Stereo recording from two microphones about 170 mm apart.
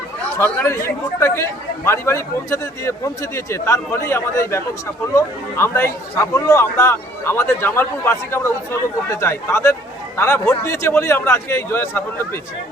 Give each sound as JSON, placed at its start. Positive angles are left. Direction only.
{"t": 0.3, "sound": "a man's voice", "side_deg": 15}